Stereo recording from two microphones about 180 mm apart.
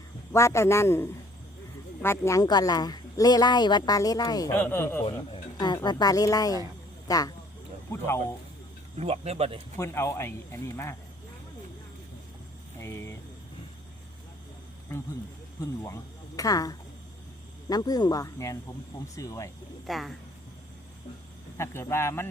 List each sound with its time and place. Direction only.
0.3 s speech: 15° left (ahead or behind)
5.0 s speech: 25° left (ahead or behind)
9.0 s speech: 35° right (ahead or behind)
9.7 s speech: 15° left (ahead or behind)
12.8 s vehicle: 15° left (ahead or behind)
15.6 s speech: 20° left (ahead or behind)
19.9 s speech: centre (ahead or behind)
21.6 s speech: 15° left (ahead or behind)